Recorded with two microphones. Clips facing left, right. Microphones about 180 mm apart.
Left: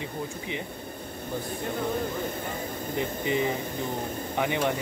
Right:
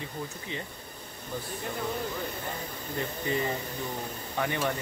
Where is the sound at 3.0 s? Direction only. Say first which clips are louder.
Left 3 dB; 15° left (ahead or behind).